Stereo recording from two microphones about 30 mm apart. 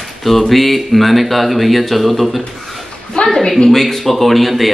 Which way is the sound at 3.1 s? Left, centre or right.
Left.